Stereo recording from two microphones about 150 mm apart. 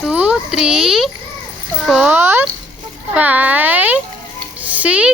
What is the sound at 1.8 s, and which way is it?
Speech, 5° right (ahead or behind).